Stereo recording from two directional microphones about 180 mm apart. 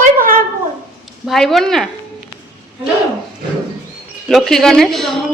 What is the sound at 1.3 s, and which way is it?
Speech, centre (ahead or behind).